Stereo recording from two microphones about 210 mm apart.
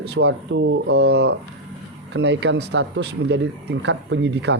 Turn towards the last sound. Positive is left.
turn(degrees=-55)  # may be behind; listen again after turning